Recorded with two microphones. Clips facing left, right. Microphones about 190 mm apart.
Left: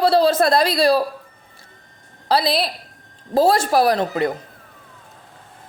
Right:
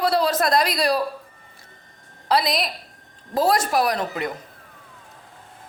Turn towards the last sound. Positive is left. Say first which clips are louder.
# left 6 dB
turn(degrees=30)  # may be behind; listen again after turning